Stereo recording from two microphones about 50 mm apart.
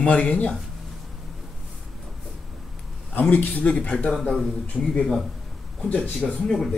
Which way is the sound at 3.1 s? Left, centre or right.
Left.